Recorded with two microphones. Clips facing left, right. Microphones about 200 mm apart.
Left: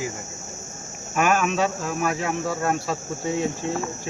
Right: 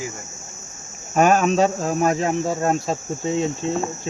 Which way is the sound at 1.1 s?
35° right (ahead or behind).